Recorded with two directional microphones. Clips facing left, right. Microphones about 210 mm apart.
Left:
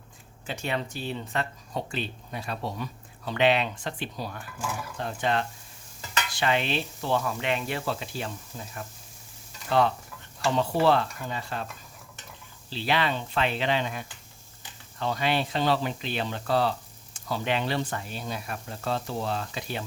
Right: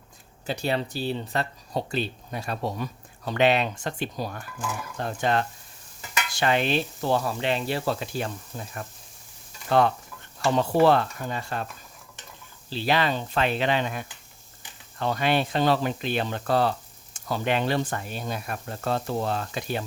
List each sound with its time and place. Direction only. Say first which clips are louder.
0.4 s speech: right 4 dB; 35° right (ahead or behind)
7.9 s speech: right 4 dB; 50° right (ahead or behind)
10.6 s speech: right 3 dB; 50° right (ahead or behind)
12.7 s speech: right 3 dB; 40° right (ahead or behind)